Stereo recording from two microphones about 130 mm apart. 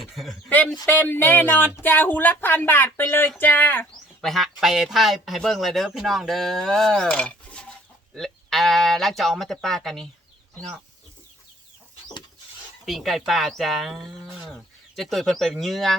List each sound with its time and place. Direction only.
0.0 s speech: centre (ahead or behind)
0.9 s speech: 15° left (ahead or behind)
4.2 s speech: centre (ahead or behind)
12.8 s speech: centre (ahead or behind)